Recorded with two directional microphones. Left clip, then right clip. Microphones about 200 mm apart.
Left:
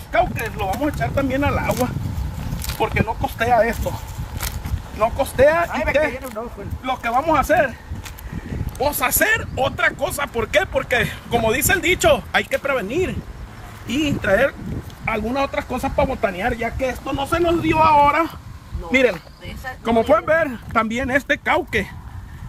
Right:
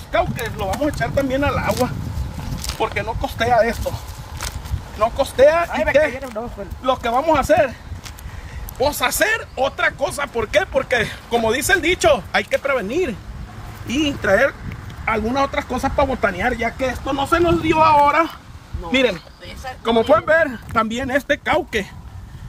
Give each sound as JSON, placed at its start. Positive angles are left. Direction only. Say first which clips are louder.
{"t": 0.1, "sound": "speech", "louder": "left 1 dB", "side_deg": -10}
{"t": 4.9, "sound": "speech", "louder": "right 1 dB", "side_deg": -5}
{"t": 5.7, "sound": "speech", "louder": "right 2 dB", "side_deg": -45}
{"t": 6.8, "sound": "speech", "louder": "right 2 dB", "side_deg": -15}
{"t": 8.7, "sound": "speech", "louder": "right 1 dB", "side_deg": 0}
{"t": 13.8, "sound": "speech", "louder": "right 1 dB", "side_deg": 10}
{"t": 19.8, "sound": "speech", "louder": "right 1 dB", "side_deg": -15}
{"t": 20.7, "sound": "speech", "louder": "left 2 dB", "side_deg": 0}